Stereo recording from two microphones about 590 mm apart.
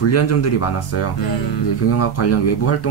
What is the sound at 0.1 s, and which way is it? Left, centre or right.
Speech, left.